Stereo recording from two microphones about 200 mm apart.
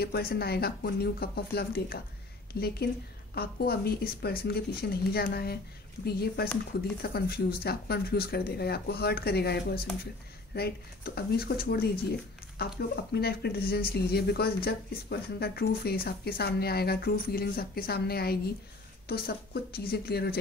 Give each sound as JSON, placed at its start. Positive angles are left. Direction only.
{"t": 0.0, "sound": "speech", "side_deg": 50}